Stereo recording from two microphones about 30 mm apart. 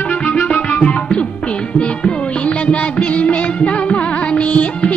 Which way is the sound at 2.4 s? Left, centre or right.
Left.